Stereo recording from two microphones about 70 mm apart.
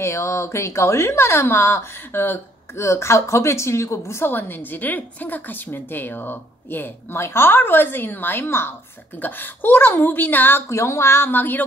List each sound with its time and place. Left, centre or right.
0.0 s a woman's voice: left
10.7 s a woman's voice: left